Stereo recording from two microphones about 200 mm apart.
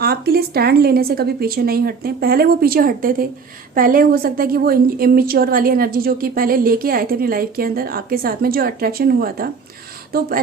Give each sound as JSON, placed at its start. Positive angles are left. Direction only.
{"t": 0.0, "sound": "a woman's voice", "side_deg": -50}